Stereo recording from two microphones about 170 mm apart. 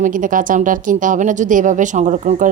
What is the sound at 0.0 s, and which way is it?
Speech, 50° right (ahead or behind).